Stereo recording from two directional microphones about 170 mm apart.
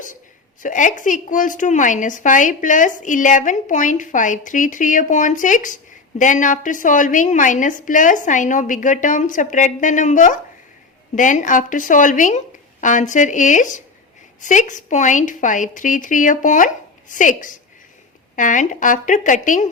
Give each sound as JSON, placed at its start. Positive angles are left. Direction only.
{"t": 0.6, "sound": "a woman's voice", "side_deg": 50}